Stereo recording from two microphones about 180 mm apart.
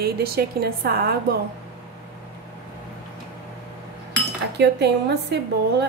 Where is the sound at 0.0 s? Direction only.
60° right (ahead or behind).